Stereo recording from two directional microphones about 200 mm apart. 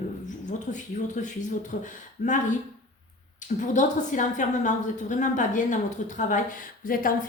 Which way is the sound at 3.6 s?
40° left (ahead or behind).